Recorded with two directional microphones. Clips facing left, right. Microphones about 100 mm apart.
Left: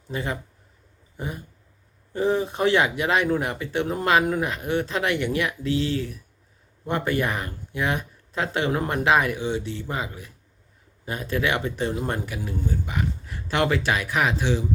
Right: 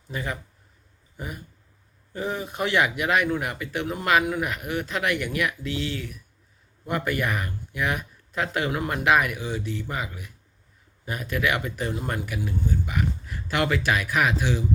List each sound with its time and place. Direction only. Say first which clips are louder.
0.1 s speech: left 3 dB; 30° left (ahead or behind)